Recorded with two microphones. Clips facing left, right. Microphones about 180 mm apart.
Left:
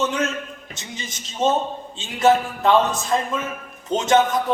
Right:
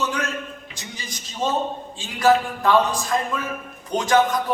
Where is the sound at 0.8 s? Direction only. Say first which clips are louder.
Left 2 dB; 25° left (ahead or behind).